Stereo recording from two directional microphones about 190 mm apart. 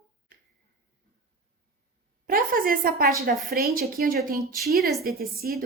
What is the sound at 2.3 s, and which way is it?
A woman's voice, 50° right (ahead or behind).